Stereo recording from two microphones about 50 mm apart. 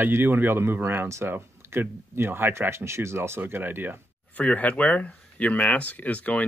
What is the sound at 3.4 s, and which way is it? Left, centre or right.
Speech, right.